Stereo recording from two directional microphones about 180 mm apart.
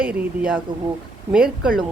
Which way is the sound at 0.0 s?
5° right (ahead or behind).